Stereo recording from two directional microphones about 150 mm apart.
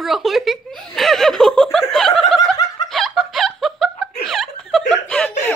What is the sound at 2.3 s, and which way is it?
Snicker, 25° left (ahead or behind).